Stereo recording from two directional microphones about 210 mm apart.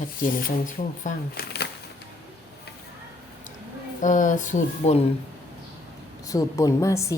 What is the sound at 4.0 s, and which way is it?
Speech, 35° left (ahead or behind).